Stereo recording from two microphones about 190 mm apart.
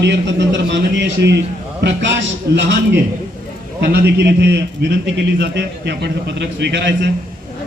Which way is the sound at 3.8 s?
60° right (ahead or behind).